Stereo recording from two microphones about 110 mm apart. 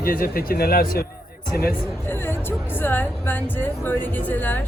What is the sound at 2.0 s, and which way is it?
Speech, 20° left (ahead or behind).